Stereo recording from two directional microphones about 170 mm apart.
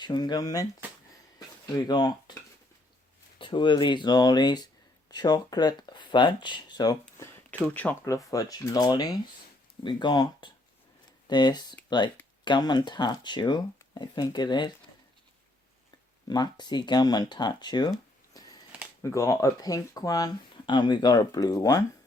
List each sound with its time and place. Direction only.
0.0 s speech: 25° left (ahead or behind)
3.3 s speech: 30° left (ahead or behind)
7.7 s speech: 10° left (ahead or behind); by 14.7 s 25° left (ahead or behind)
16.2 s speech: 25° left (ahead or behind)
19.0 s speech: 20° left (ahead or behind)